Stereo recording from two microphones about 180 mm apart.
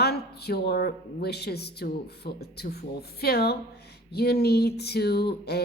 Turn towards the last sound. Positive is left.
turn(degrees=65)  # may be behind; listen again after turning